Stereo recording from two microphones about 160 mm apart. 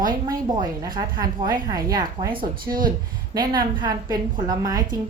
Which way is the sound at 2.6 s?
60° right (ahead or behind).